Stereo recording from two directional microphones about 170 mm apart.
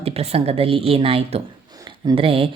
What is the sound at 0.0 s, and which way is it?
Speech, 35° right (ahead or behind).